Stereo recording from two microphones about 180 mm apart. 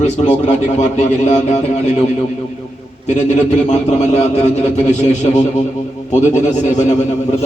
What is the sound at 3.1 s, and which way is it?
A man's voice, 40° left (ahead or behind).